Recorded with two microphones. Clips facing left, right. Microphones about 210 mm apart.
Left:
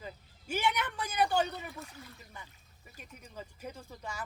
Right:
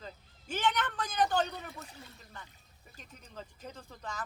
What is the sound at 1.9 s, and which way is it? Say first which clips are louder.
Speech: left 1 dB; 25° right (ahead or behind).